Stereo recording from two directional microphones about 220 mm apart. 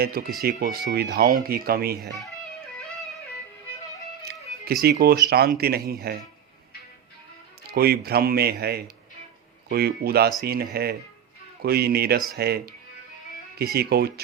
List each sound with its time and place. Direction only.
0.0 s speech: 45° right (ahead or behind)
4.3 s music: 45° right (ahead or behind)
5.3 s speech: 45° right (ahead or behind)
7.7 s speech: 45° right (ahead or behind)
13.7 s speech: 45° right (ahead or behind)